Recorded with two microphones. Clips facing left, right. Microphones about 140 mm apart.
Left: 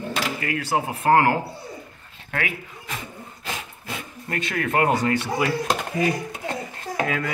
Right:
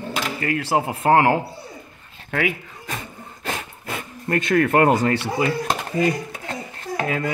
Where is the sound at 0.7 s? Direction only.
25° right (ahead or behind).